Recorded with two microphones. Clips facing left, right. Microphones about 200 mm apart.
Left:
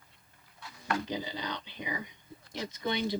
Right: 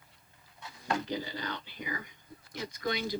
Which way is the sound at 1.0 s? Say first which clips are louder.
Even; 20° left (ahead or behind).